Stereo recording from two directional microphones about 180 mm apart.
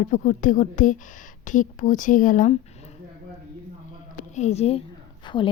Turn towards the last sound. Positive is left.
turn(degrees=25)  # may be behind; listen again after turning